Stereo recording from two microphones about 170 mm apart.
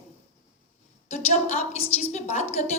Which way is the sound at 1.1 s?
40° left (ahead or behind).